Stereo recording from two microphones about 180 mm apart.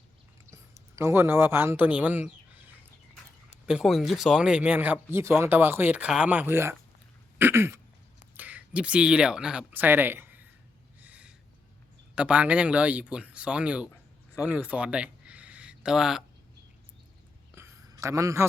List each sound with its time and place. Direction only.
0.5 s speech: 15° right (ahead or behind)
3.7 s speech: centre (ahead or behind)
7.3 s throat clearing: 10° right (ahead or behind)
8.4 s speech: 10° right (ahead or behind)
11.0 s a sound: 5° right (ahead or behind)
12.1 s speech: 5° right (ahead or behind)
17.5 s a sound: 15° right (ahead or behind)